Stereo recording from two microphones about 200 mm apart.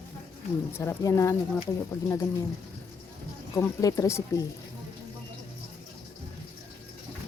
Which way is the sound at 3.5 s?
15° left (ahead or behind).